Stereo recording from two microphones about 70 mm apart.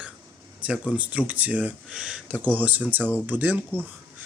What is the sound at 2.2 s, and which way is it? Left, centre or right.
Speech, right.